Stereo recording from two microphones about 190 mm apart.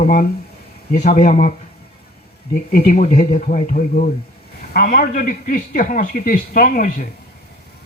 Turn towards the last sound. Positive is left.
turn(degrees=45)  # may be behind; listen again after turning